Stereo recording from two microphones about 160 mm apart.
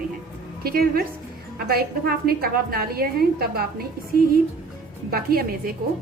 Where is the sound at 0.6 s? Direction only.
70° right (ahead or behind).